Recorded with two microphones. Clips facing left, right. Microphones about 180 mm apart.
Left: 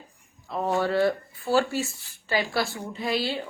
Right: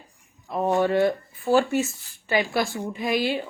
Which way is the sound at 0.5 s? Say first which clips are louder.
Right 3 dB; 15° right (ahead or behind).